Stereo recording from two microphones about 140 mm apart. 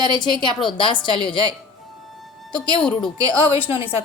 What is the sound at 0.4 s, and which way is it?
Speech, 35° left (ahead or behind).